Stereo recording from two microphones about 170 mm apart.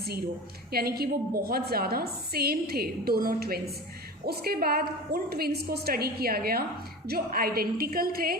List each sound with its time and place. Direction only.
0.7 s a woman's voice: 65° right (ahead or behind)